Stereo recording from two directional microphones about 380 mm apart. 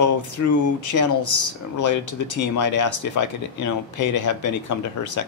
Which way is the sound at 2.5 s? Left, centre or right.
Left.